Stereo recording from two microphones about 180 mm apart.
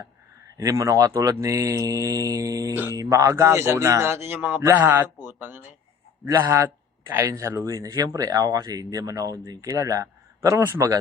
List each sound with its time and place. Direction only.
0.6 s speech: 15° right (ahead or behind)